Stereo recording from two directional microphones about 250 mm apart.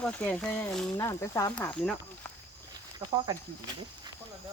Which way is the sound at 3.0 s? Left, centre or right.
Centre.